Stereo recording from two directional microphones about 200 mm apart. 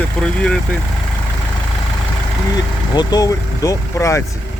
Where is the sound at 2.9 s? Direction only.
20° left (ahead or behind).